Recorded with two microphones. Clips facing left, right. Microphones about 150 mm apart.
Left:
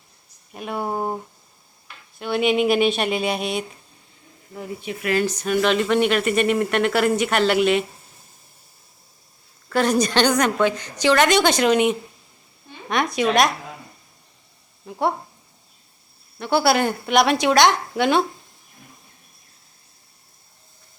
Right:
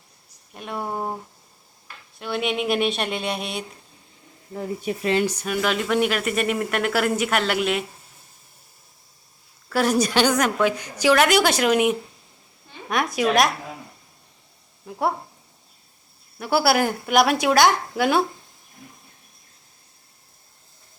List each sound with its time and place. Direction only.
0.5 s speech: 5° left (ahead or behind)
2.1 s speech: centre (ahead or behind)
4.5 s speech: 35° right (ahead or behind)
5.1 s speech: 10° right (ahead or behind)
9.6 s speech: 5° right (ahead or behind)
14.8 s speech: centre (ahead or behind)
16.4 s speech: 5° right (ahead or behind)